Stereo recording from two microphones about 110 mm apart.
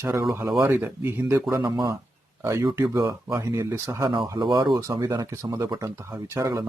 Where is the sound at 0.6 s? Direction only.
15° right (ahead or behind).